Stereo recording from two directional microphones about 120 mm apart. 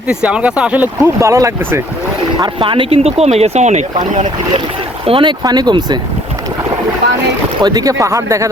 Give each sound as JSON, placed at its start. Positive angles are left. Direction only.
{"t": 0.1, "sound": "speech", "side_deg": -10}
{"t": 1.2, "sound": "speech", "side_deg": -25}
{"t": 2.4, "sound": "speech", "side_deg": -45}
{"t": 5.0, "sound": "speech", "side_deg": -50}
{"t": 5.4, "sound": "speech", "side_deg": -35}
{"t": 7.6, "sound": "speech", "side_deg": -35}